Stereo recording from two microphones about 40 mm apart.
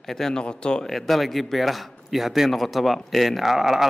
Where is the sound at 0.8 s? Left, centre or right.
Centre.